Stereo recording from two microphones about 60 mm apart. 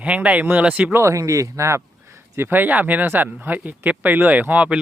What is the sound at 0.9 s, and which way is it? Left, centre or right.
Speech, right.